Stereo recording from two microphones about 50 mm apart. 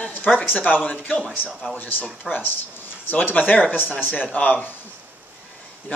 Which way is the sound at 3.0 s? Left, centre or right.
Left.